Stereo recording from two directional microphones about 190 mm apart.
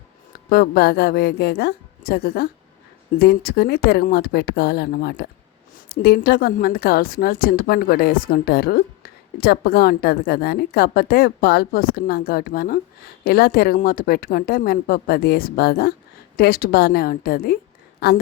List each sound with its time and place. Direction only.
0.5 s a woman's voice: 55° left (ahead or behind)